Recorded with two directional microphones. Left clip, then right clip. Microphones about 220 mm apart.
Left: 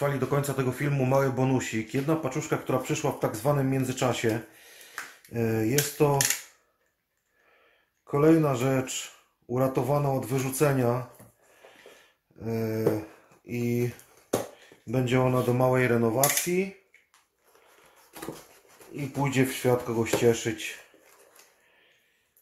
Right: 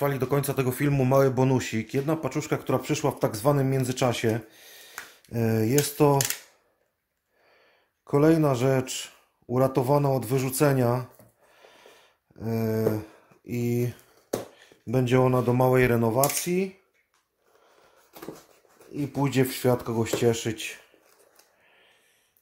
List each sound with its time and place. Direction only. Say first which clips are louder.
0.0 s speech: right 1 dB; 45° right (ahead or behind)
8.1 s speech: right 1 dB; 50° right (ahead or behind)
12.4 s speech: right 2 dB; 50° right (ahead or behind)
14.9 s speech: right 3 dB; 50° right (ahead or behind)
19.1 s speech: right 1 dB; 50° right (ahead or behind)